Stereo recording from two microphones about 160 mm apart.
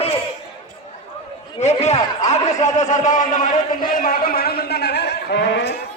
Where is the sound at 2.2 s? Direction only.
45° left (ahead or behind); by 5.8 s 90° left.